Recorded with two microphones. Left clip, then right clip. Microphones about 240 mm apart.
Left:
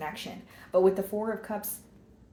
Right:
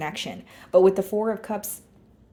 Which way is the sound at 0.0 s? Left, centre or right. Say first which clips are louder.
Right 6 dB; right.